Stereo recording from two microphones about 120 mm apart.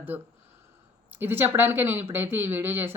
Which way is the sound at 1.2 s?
20° right (ahead or behind).